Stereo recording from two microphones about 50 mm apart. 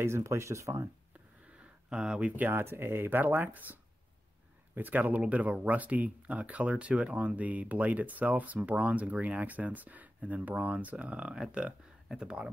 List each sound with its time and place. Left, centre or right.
0.0 s speech: right
1.6 s a sound: centre
2.5 s speech: right; by 12.4 s centre